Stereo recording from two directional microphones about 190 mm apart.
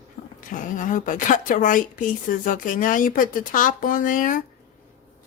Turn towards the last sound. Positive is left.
turn(degrees=45)  # may be behind; listen again after turning